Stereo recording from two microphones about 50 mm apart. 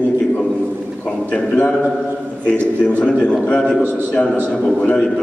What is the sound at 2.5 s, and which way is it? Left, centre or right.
A man's voice, left.